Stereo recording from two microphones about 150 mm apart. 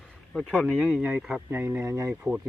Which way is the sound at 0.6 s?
Centre (ahead or behind).